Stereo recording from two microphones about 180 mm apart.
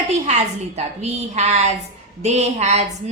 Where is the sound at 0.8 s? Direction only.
40° right (ahead or behind).